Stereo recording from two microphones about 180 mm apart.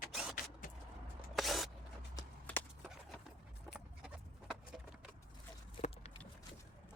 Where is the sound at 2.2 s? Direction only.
20° left (ahead or behind).